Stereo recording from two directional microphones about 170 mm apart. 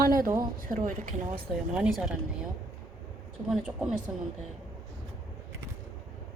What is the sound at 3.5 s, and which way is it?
Speech, 5° right (ahead or behind).